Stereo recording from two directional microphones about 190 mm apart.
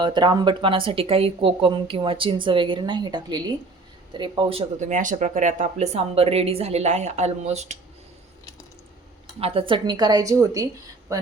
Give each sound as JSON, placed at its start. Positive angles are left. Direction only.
{"t": 0.0, "sound": "speech", "side_deg": -25}
{"t": 9.4, "sound": "speech", "side_deg": -30}